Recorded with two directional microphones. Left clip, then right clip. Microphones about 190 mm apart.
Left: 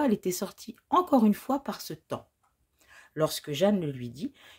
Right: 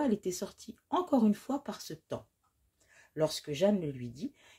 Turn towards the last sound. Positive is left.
turn(degrees=25)  # may be behind; listen again after turning